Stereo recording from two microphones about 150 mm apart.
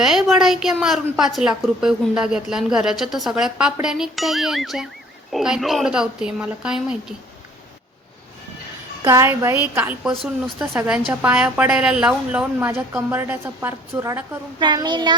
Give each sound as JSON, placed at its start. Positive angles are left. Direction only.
{"t": 0.0, "sound": "a woman's voice", "side_deg": 0}
{"t": 9.0, "sound": "a woman's voice", "side_deg": -20}